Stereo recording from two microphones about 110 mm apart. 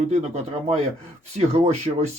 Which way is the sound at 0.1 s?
90° right.